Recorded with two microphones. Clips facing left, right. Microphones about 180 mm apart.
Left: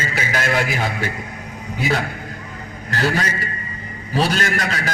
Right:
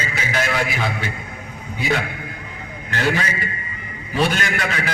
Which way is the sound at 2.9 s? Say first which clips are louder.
Left 1 dB; 40° left (ahead or behind).